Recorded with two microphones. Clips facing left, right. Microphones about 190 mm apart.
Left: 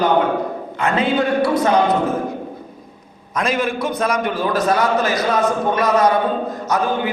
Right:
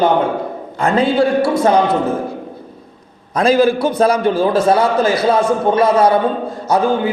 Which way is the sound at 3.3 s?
30° right (ahead or behind).